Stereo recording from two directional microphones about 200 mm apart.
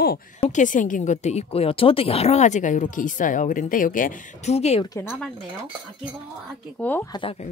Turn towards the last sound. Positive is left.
turn(degrees=10)  # may be behind; listen again after turning